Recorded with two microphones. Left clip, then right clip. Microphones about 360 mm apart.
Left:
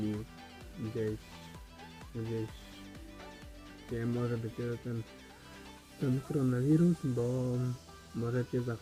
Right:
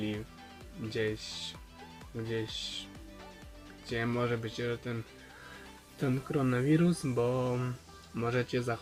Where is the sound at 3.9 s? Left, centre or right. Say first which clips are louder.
Right 4 dB; right.